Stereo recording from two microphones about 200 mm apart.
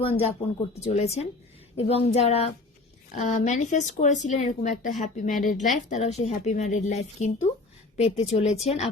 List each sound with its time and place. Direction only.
0.0 s speech: 30° left (ahead or behind)